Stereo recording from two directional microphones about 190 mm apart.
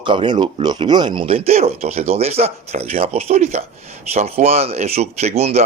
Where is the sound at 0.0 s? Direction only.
25° right (ahead or behind).